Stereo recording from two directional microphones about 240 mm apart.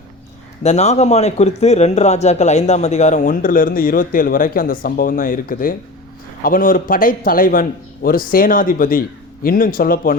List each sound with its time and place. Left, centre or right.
0.6 s a man's voice: left